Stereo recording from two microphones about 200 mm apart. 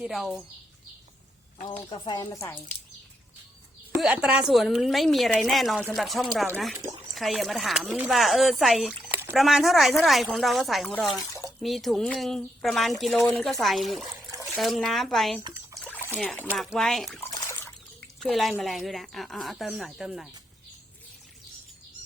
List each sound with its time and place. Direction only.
0.0 s speech: centre (ahead or behind)
1.9 s speech: 20° left (ahead or behind)
3.9 s speech: 5° right (ahead or behind)
11.2 s a sound: 15° left (ahead or behind)
11.6 s speech: centre (ahead or behind)
17.2 s a sound: 10° left (ahead or behind)
18.2 s speech: centre (ahead or behind)